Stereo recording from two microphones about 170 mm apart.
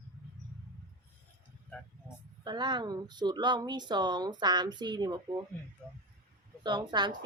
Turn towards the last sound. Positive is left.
turn(degrees=-25)  # may be behind; listen again after turning